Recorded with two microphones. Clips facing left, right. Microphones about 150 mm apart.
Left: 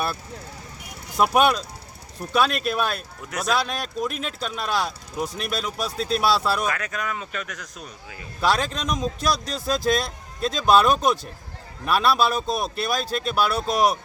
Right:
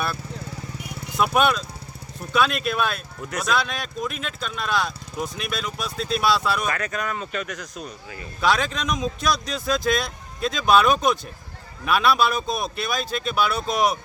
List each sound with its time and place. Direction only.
1.1 s speech: 40° left (ahead or behind)
6.7 s speech: 5° left (ahead or behind)
8.4 s speech: 35° left (ahead or behind)